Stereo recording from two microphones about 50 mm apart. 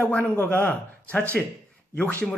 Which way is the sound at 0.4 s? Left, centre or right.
Left.